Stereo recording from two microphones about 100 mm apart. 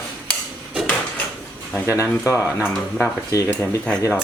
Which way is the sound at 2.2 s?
30° left (ahead or behind).